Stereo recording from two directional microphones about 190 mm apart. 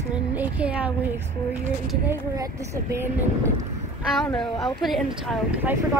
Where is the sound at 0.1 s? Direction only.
10° right (ahead or behind).